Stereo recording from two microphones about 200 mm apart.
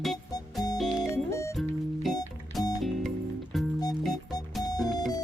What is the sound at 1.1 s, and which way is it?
Music, 15° left (ahead or behind).